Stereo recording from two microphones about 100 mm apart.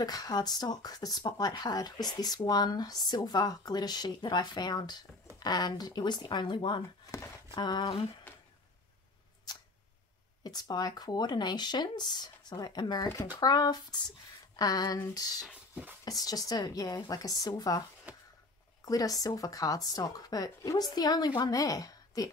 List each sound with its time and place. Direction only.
0.0 s speech: 40° left (ahead or behind)
10.4 s speech: 45° left (ahead or behind)
15.4 s speech: 15° right (ahead or behind)
16.1 s speech: 40° left (ahead or behind)
18.1 s a sound: 15° right (ahead or behind)
18.9 s speech: 40° left (ahead or behind)